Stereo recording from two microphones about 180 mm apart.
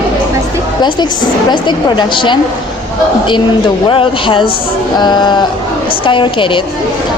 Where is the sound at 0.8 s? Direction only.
25° left (ahead or behind).